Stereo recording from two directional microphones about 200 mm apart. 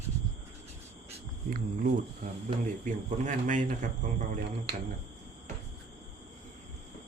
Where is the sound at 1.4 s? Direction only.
45° right (ahead or behind).